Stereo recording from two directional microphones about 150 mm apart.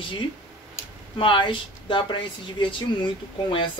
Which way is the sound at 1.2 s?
35° left (ahead or behind).